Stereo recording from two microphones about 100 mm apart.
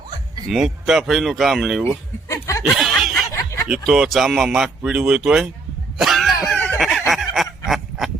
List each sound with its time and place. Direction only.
0.4 s speech: 5° right (ahead or behind)
2.2 s chuckle: 30° left (ahead or behind)
2.6 s snicker: centre (ahead or behind)
3.3 s snicker: 30° left (ahead or behind)
3.8 s speech: centre (ahead or behind)
6.0 s cough: centre (ahead or behind)
6.7 s fowl: centre (ahead or behind)
7.1 s honk: centre (ahead or behind)